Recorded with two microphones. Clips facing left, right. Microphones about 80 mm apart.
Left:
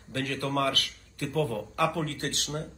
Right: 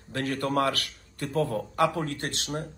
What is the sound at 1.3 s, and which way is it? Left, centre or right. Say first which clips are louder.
Speech: right 2 dB; right.